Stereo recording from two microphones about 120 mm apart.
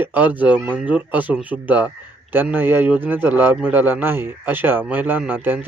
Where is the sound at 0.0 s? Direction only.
15° right (ahead or behind).